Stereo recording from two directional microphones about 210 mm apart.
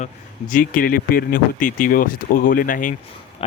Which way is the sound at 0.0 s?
40° left (ahead or behind).